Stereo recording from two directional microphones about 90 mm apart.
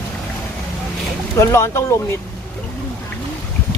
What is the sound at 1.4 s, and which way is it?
Speech, 30° left (ahead or behind).